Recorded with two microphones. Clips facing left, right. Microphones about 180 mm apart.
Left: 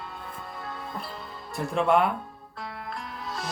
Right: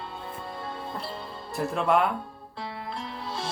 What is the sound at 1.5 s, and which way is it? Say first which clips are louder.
Speech: left 1 dB; centre (ahead or behind).